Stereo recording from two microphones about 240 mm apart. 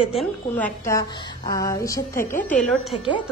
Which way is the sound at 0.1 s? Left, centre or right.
Centre.